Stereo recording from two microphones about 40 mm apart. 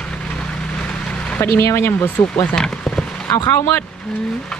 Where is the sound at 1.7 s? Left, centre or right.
Left.